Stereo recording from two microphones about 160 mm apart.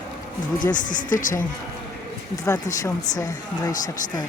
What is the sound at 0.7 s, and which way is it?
Speech, 55° left (ahead or behind).